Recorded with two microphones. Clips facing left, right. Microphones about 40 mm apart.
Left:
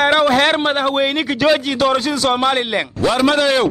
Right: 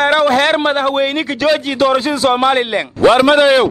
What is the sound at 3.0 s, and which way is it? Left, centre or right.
Speech, right.